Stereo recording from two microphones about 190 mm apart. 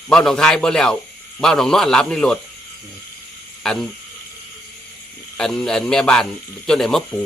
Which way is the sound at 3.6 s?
5° left (ahead or behind).